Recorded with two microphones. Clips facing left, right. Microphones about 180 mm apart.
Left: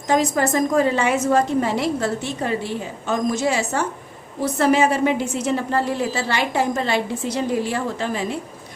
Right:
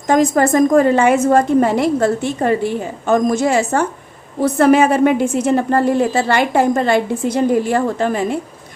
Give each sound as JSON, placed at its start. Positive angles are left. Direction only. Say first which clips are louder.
{"t": 0.1, "sound": "a woman's voice", "louder": "right 6 dB", "side_deg": -50}